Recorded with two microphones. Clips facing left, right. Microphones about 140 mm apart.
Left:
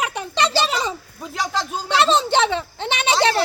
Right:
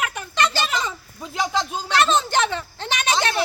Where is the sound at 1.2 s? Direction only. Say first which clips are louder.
Right 2 dB; centre (ahead or behind).